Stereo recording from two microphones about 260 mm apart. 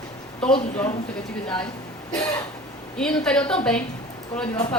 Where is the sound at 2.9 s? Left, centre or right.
Centre.